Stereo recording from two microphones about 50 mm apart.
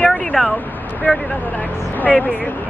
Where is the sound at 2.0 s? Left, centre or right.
Left.